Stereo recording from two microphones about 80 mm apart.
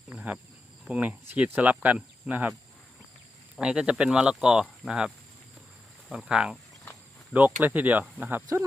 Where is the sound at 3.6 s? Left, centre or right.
Centre.